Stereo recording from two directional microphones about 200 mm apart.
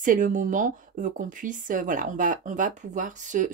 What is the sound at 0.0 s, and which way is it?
Speech, 40° right (ahead or behind).